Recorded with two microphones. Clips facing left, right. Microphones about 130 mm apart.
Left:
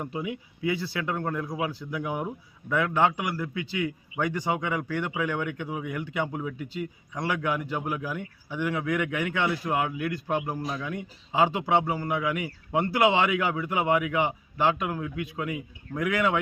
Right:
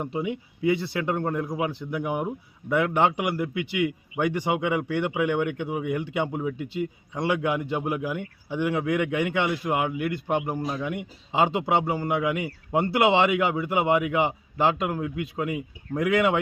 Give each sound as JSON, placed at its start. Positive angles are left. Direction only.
{"t": 0.0, "sound": "speech", "side_deg": -25}